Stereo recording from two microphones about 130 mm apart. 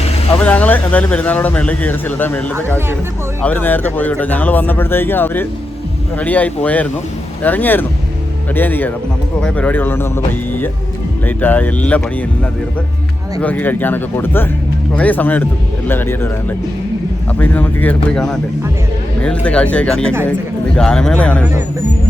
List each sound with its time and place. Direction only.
0.3 s speech: 10° left (ahead or behind)
3.4 s speech: 15° left (ahead or behind)